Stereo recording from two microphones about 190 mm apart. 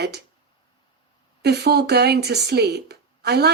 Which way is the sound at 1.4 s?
60° right (ahead or behind).